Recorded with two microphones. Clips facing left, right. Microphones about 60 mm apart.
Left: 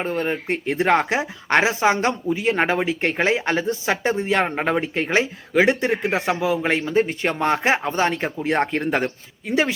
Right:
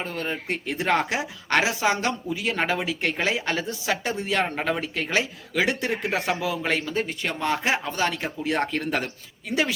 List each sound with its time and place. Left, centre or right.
0.0 s speech: left